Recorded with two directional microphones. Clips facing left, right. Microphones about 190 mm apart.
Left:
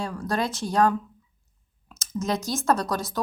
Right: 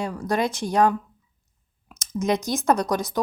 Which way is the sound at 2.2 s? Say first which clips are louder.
Right 3 dB; 15° right (ahead or behind).